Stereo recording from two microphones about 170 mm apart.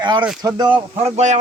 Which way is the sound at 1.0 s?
40° right (ahead or behind).